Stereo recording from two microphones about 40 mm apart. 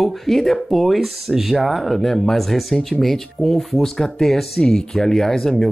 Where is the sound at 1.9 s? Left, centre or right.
Centre.